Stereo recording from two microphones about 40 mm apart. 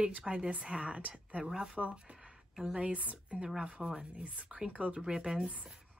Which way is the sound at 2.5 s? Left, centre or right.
Centre.